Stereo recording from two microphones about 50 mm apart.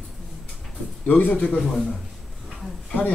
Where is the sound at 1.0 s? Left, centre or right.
Left.